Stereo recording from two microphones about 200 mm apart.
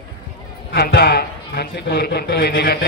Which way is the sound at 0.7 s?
50° left (ahead or behind).